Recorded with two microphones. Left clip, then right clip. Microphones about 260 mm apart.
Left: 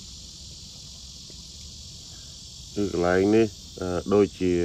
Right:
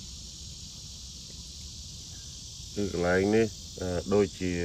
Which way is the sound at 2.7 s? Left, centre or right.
Centre.